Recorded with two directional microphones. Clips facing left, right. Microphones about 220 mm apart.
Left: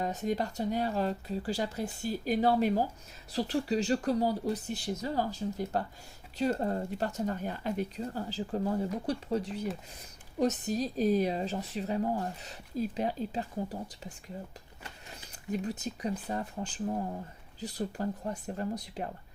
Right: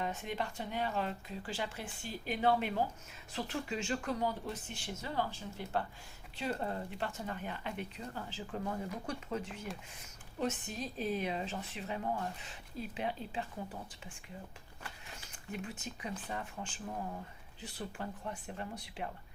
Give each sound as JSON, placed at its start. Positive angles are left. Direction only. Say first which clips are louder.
{"t": 0.0, "sound": "speech", "louder": "left 7 dB", "side_deg": 40}
{"t": 15.5, "sound": "speech", "louder": "left 9 dB", "side_deg": 40}